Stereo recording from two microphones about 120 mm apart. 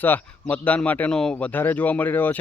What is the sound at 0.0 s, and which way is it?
Speech, 15° left (ahead or behind).